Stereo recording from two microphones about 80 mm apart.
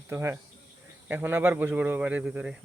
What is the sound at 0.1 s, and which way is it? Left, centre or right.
Speech, right.